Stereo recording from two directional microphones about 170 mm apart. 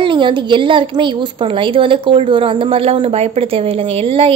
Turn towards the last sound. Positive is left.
turn(degrees=-30)  # may be behind; listen again after turning